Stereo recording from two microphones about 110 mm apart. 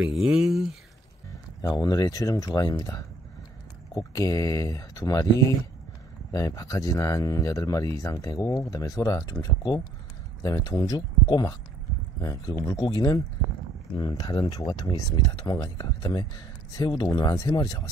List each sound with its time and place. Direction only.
0.0 s speech: 5° right (ahead or behind)
1.6 s speech: 35° left (ahead or behind)
6.3 s speech: 30° left (ahead or behind)
12.8 s speech: 40° left (ahead or behind)